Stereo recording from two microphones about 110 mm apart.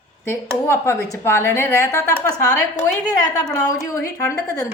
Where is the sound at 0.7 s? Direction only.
25° left (ahead or behind).